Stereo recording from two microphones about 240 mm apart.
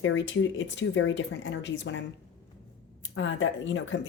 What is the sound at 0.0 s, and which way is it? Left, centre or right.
Speech, left.